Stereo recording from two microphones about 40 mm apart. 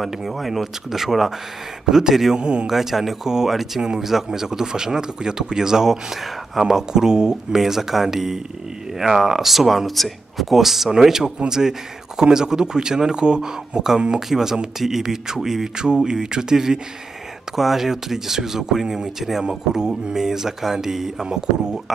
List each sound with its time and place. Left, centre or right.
0.0 s speech: centre
2.3 s speech: right
2.7 s speech: centre